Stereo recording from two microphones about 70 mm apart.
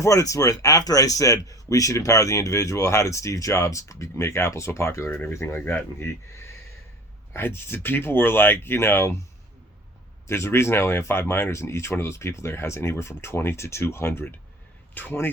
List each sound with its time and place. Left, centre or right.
0.0 s a man's voice: left
10.2 s speech: left